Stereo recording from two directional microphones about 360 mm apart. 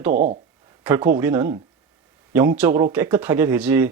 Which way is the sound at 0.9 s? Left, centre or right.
Centre.